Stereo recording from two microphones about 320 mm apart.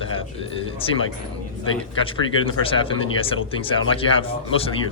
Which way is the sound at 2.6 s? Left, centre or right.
Centre.